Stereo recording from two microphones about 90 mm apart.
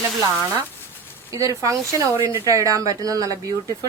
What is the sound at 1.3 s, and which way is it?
Speech, 40° right (ahead or behind).